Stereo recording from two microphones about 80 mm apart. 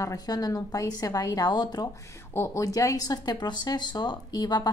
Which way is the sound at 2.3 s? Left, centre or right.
Left.